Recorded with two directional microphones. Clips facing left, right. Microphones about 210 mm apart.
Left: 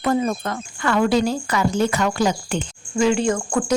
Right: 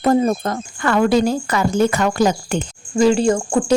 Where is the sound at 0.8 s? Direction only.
50° right (ahead or behind).